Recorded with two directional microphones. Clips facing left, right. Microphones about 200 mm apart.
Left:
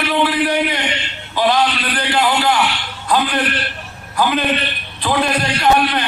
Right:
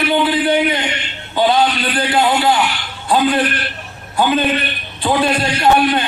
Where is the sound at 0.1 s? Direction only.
25° right (ahead or behind).